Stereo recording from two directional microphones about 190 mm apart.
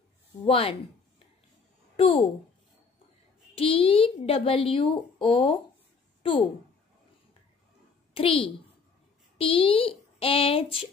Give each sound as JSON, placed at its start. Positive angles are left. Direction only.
{"t": 0.5, "sound": "a woman's voice", "side_deg": 30}
{"t": 2.0, "sound": "a child's voice", "side_deg": 35}
{"t": 3.5, "sound": "a woman's voice", "side_deg": 30}
{"t": 8.1, "sound": "a child's voice", "side_deg": 30}